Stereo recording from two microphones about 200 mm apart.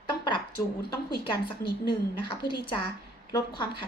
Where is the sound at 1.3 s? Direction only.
25° left (ahead or behind).